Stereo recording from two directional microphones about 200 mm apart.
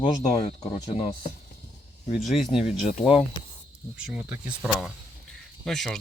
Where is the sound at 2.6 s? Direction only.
35° left (ahead or behind).